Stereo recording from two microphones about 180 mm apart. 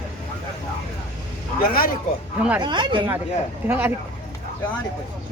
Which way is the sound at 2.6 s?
25° right (ahead or behind).